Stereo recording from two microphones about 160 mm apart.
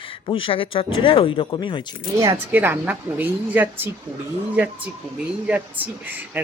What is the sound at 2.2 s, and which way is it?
A woman's voice, 15° right (ahead or behind).